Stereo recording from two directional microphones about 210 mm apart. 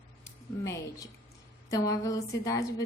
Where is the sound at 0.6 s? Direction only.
15° left (ahead or behind).